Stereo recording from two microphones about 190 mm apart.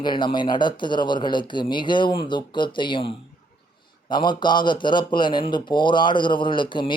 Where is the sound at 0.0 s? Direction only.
25° left (ahead or behind).